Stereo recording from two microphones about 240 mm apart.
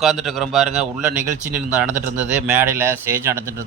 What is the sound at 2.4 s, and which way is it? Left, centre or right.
Speech, centre.